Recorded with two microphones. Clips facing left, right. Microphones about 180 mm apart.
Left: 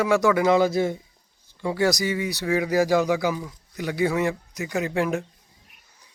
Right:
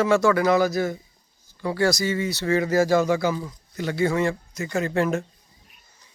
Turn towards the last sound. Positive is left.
turn(degrees=15)  # may be behind; listen again after turning